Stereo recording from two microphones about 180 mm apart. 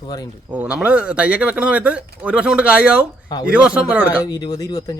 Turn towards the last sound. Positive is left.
turn(degrees=20)  # may be behind; listen again after turning